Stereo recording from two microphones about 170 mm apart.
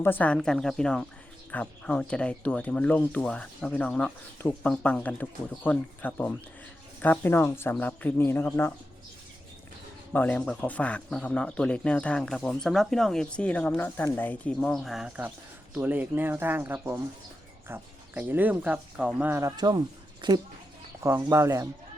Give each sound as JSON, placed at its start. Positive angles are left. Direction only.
{"t": 0.0, "sound": "speech", "side_deg": 10}
{"t": 10.1, "sound": "speech", "side_deg": 10}
{"t": 21.0, "sound": "speech", "side_deg": -15}